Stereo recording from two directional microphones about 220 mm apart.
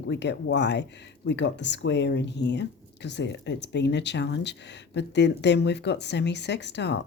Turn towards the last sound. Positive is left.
turn(degrees=50)  # may be behind; listen again after turning